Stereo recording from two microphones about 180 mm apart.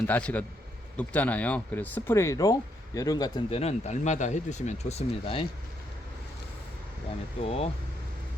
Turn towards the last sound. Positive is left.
turn(degrees=35)  # may be behind; listen again after turning